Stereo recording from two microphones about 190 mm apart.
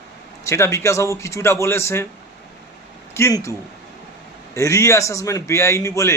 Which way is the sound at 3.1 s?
15° left (ahead or behind).